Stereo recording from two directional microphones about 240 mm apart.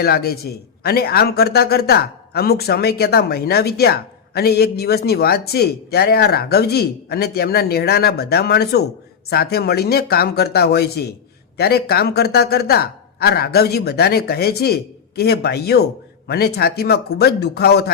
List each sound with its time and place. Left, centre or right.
0.0 s a man's voice: left